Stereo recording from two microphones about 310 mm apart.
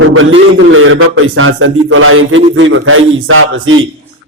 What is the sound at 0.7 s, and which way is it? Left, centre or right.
A man's voice, right.